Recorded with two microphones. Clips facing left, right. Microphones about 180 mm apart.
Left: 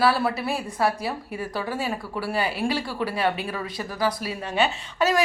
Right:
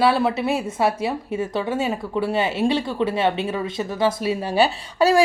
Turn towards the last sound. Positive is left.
turn(degrees=-35)  # may be behind; listen again after turning